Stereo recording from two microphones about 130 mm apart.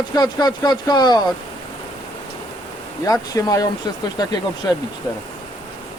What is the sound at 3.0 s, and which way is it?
Speech, 25° left (ahead or behind).